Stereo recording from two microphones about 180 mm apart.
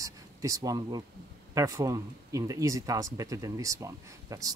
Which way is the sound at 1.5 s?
20° right (ahead or behind).